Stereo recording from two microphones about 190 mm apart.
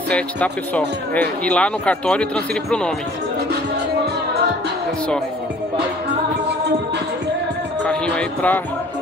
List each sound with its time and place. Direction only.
0.1 s speech: 5° left (ahead or behind)
7.8 s music: 5° left (ahead or behind)